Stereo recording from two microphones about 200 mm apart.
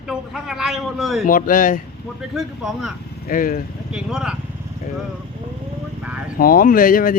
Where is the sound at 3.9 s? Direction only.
5° right (ahead or behind).